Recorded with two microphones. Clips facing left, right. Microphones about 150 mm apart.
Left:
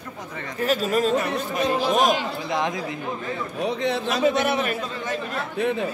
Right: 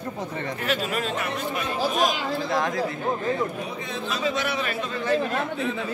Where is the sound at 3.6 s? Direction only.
80° left; by 5.8 s 60° left (ahead or behind).